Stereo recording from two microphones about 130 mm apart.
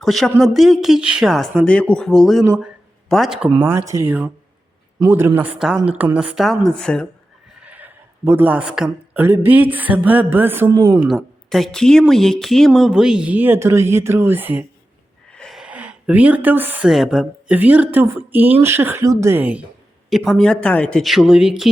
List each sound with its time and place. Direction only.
0.0 s speech: centre (ahead or behind)
3.6 s speech: 20° right (ahead or behind); by 7.1 s 5° left (ahead or behind)
7.6 s a sound: 10° right (ahead or behind)
9.2 s speech: 15° right (ahead or behind)
11.1 s speech: centre (ahead or behind); by 14.6 s 15° right (ahead or behind)
15.3 s a sound: 5° left (ahead or behind); by 16.9 s 15° right (ahead or behind)
16.9 s speech: centre (ahead or behind)
17.6 s speech: 10° right (ahead or behind)
20.1 s speech: centre (ahead or behind)